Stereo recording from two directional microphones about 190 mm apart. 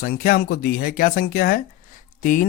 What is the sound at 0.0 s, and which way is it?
Speech, 50° left (ahead or behind).